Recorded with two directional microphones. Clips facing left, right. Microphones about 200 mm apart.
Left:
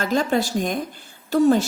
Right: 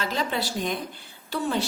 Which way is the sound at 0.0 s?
45° left (ahead or behind).